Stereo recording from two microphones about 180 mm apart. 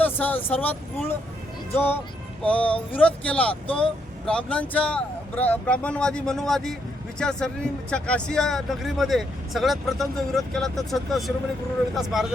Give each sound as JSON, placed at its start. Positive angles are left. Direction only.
{"t": 0.0, "sound": "speech", "side_deg": 10}